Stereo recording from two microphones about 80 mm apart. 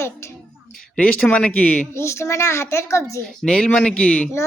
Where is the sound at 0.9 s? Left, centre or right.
Centre.